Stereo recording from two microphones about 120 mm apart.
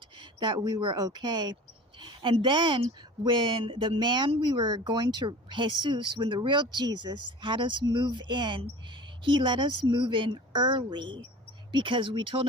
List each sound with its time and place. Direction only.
0.2 s speech: 40° right (ahead or behind)